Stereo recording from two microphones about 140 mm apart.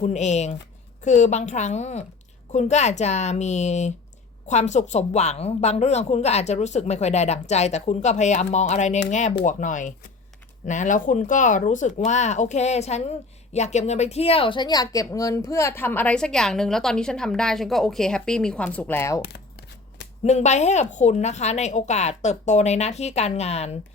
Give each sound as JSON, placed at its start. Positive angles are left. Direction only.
{"t": 0.0, "sound": "a woman's voice", "side_deg": 55}
{"t": 20.2, "sound": "a woman's voice", "side_deg": 55}